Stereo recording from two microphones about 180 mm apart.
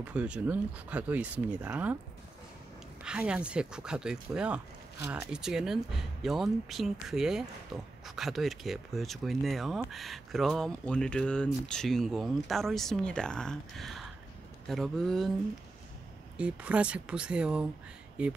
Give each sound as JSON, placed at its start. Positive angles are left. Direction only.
{"t": 0.0, "sound": "speech", "side_deg": -5}
{"t": 3.0, "sound": "speech", "side_deg": -5}
{"t": 16.3, "sound": "speech", "side_deg": -5}